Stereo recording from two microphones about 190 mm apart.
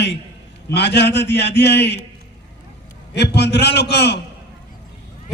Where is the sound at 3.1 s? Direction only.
60° left (ahead or behind).